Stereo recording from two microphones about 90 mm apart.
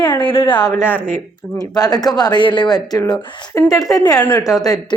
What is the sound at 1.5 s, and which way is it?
A woman's voice, 45° left (ahead or behind).